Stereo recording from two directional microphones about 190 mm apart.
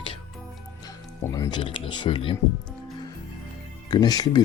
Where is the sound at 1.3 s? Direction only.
20° left (ahead or behind).